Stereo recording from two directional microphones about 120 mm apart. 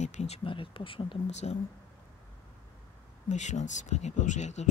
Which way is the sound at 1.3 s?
70° left (ahead or behind).